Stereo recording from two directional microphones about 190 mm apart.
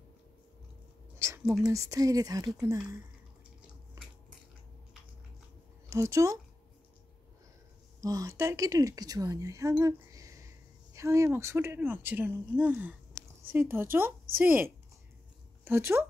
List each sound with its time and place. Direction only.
1.4 s speech: 5° right (ahead or behind)
1.7 s speech: 15° right (ahead or behind)
5.9 s speech: 15° right (ahead or behind)
8.0 s speech: 20° right (ahead or behind)